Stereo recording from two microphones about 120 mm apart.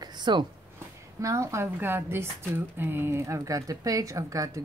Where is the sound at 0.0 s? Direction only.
35° right (ahead or behind).